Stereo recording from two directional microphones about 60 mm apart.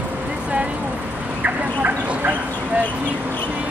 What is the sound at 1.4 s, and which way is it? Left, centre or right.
Speech, right.